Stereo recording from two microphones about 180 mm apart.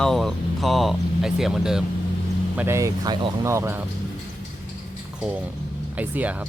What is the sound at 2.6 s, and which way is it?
Speech, 15° right (ahead or behind).